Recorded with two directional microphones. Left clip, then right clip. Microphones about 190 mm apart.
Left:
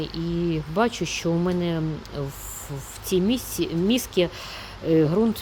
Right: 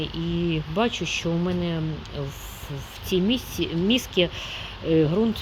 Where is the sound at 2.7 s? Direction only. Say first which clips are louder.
Left 1 dB; 30° left (ahead or behind).